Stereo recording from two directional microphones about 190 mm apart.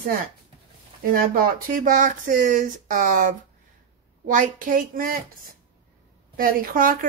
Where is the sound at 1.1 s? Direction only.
50° right (ahead or behind).